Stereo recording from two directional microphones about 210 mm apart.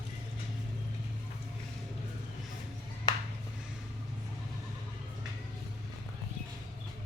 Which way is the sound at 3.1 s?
20° left (ahead or behind).